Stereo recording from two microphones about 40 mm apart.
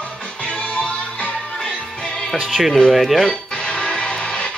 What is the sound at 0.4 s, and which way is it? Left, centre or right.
Music, left.